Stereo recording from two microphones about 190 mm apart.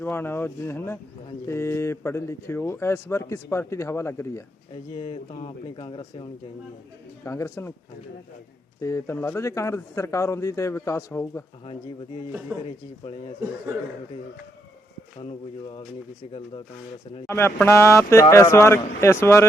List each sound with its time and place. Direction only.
0.0 s speech: 10° left (ahead or behind)
4.9 s speech: 30° left (ahead or behind)
7.3 s speech: 15° left (ahead or behind)
8.8 s speech: 15° left (ahead or behind)
12.5 s speech: 10° right (ahead or behind)
15.2 s speech: 30° left (ahead or behind)
17.2 s speech: 15° left (ahead or behind)